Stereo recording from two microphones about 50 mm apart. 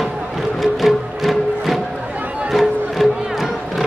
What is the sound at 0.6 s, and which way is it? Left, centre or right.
Music, centre.